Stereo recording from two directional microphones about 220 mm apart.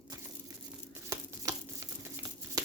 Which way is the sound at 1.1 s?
15° right (ahead or behind).